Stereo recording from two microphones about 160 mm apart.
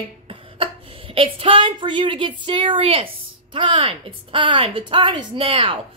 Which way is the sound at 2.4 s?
30° right (ahead or behind).